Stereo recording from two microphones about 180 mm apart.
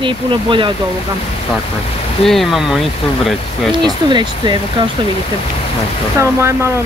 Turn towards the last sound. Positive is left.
turn(degrees=-15)  # may be behind; listen again after turning